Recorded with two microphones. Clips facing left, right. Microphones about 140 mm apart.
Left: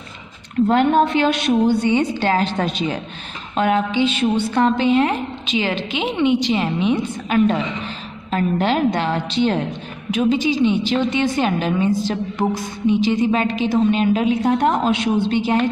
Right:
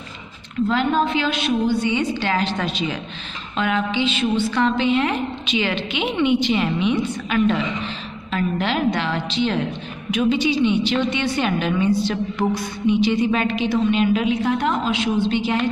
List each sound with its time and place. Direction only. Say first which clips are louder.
0.6 s a woman's voice: left 4 dB; 55° left (ahead or behind)